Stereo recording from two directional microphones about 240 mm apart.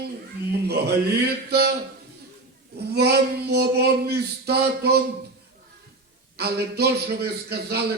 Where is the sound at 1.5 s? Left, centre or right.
Right.